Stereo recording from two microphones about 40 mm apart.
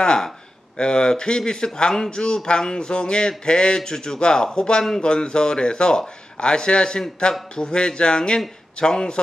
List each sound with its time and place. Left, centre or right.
0.0 s a man's voice: centre